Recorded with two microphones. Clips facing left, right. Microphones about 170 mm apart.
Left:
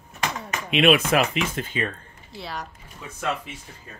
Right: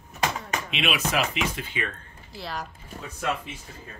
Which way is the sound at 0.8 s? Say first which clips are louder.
Left 9 dB; 50° left (ahead or behind).